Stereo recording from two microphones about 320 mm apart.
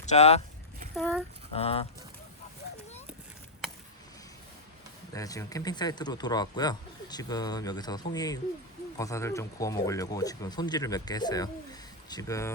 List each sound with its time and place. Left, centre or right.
0.0 s speech: left
0.9 s speech: centre
1.5 s speech: centre
5.1 s speech: centre